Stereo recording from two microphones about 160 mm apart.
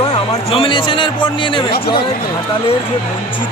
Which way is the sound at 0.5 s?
35° left (ahead or behind).